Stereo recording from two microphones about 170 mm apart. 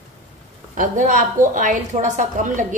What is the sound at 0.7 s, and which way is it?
Speech, 50° right (ahead or behind).